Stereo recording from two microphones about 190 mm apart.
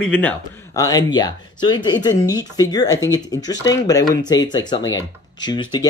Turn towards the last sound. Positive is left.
turn(degrees=25)  # may be behind; listen again after turning